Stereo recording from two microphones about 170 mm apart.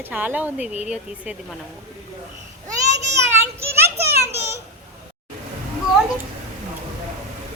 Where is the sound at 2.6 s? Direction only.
20° right (ahead or behind).